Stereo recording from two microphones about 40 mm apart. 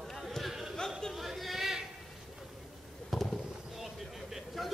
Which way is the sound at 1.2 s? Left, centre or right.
Centre.